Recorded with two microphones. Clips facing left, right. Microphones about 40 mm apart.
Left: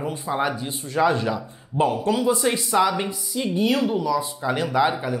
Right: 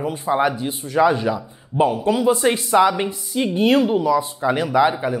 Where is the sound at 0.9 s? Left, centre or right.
Centre.